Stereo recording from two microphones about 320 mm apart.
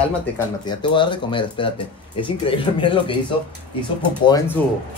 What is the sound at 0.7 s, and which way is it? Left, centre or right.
Speech, centre.